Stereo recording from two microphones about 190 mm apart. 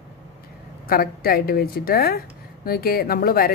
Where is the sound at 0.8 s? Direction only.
50° left (ahead or behind).